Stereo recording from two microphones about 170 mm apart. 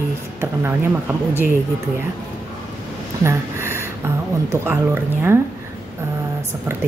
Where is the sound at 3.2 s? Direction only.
15° right (ahead or behind).